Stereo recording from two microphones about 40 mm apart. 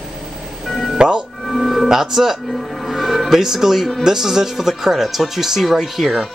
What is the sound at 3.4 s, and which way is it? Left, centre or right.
Speech, centre.